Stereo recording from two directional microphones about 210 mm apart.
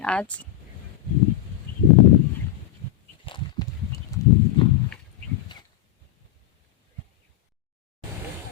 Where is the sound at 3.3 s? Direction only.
20° left (ahead or behind).